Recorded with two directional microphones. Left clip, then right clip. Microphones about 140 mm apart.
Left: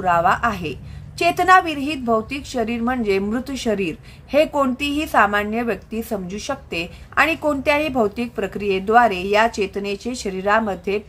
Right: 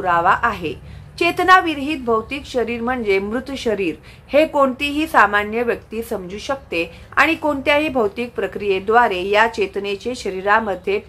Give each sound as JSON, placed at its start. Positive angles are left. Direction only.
{"t": 0.0, "sound": "a woman's voice", "side_deg": 35}